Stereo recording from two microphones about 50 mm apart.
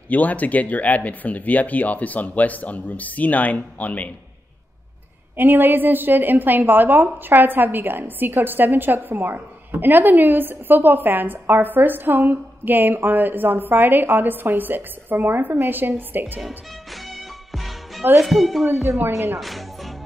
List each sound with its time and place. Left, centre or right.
0.1 s speech: left
5.4 s a woman's voice: right
17.5 s music: centre
18.2 s speech: centre
18.9 s speech: right
19.4 s music: centre